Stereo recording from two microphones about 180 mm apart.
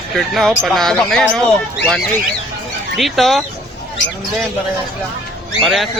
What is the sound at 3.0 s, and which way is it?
Speech, centre (ahead or behind).